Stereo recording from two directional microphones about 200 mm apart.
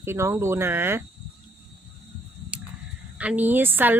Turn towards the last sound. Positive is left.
turn(degrees=-10)  # may be behind; listen again after turning